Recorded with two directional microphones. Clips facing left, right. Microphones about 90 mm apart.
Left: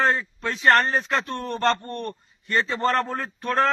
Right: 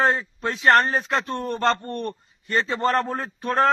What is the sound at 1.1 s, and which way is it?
Speech, 30° right (ahead or behind).